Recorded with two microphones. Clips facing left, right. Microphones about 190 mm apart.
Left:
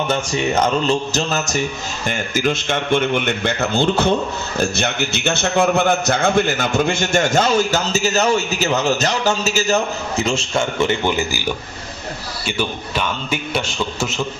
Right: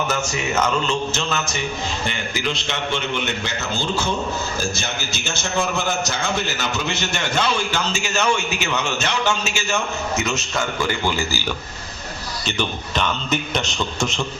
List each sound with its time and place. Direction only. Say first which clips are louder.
0.1 s a man's voice: left 4 dB; 30° left (ahead or behind)
12.5 s a man's voice: left 2 dB; 10° left (ahead or behind)